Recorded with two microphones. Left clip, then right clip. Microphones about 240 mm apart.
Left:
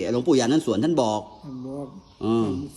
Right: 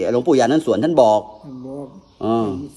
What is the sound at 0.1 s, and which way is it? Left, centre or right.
Speech, centre.